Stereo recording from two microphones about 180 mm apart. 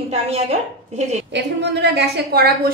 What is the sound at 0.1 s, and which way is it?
A woman's voice, 35° right (ahead or behind).